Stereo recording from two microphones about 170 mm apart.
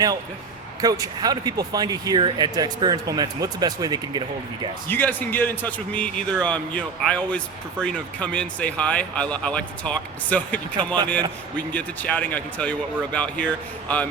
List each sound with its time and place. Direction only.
0.8 s speech: 20° right (ahead or behind)
4.9 s speech: 10° left (ahead or behind)
10.8 s speech: 25° right (ahead or behind)
11.5 s speech: 10° left (ahead or behind)